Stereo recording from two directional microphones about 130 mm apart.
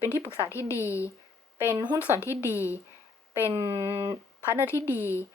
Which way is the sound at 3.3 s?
20° right (ahead or behind).